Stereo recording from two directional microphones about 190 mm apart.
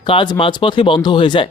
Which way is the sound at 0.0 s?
25° left (ahead or behind).